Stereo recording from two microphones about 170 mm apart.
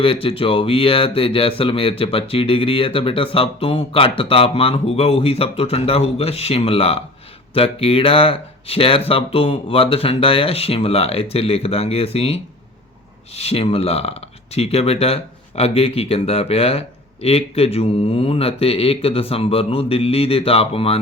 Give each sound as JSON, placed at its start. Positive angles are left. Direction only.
{"t": 0.0, "sound": "speech", "side_deg": 35}